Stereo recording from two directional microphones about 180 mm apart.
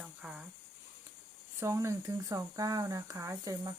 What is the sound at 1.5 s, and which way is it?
Speech, 15° right (ahead or behind).